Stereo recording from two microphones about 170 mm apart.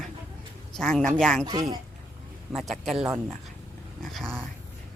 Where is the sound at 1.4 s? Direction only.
25° right (ahead or behind).